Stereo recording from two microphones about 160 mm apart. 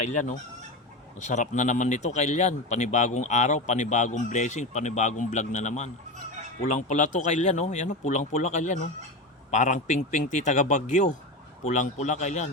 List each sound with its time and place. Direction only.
0.0 s speech: 50° left (ahead or behind)